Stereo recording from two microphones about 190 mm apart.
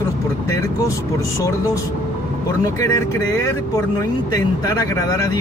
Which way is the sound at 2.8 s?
15° left (ahead or behind).